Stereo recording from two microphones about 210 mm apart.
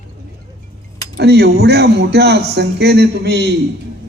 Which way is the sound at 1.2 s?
50° right (ahead or behind).